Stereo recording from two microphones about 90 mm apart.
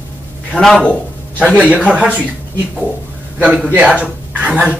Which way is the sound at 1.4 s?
15° right (ahead or behind).